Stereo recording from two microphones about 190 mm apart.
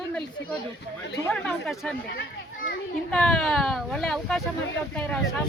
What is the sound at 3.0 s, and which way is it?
Speech, 5° left (ahead or behind).